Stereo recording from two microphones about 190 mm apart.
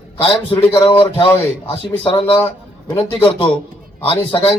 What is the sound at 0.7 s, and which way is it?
Speech, 25° left (ahead or behind).